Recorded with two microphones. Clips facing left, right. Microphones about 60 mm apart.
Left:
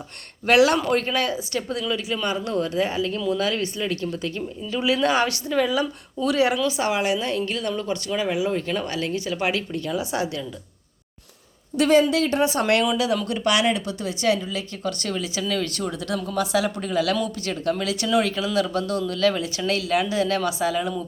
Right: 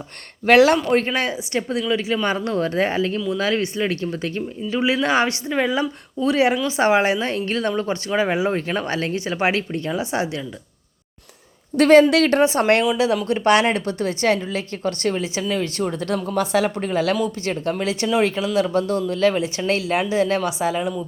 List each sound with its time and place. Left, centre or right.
0.4 s speech: right
11.8 s speech: right
12.1 s a woman's voice: right
12.4 s speech: right
15.8 s speech: right